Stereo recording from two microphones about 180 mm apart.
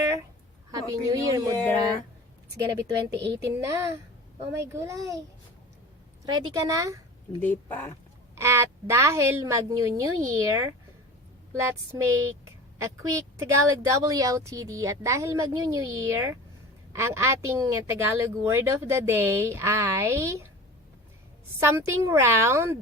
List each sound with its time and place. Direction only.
0.7 s a woman's voice: 20° right (ahead or behind)
1.5 s speech: 10° left (ahead or behind)
2.6 s speech: 20° right (ahead or behind)
3.1 s a woman's voice: 70° right (ahead or behind)
3.6 s speech: 15° right (ahead or behind)
6.5 s speech: 20° right (ahead or behind)
7.4 s speech: 10° left (ahead or behind)
8.4 s speech: 15° right (ahead or behind)
21.6 s speech: 15° right (ahead or behind)